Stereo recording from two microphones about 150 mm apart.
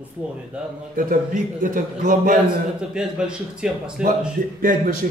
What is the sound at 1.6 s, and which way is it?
Speech, 65° right (ahead or behind).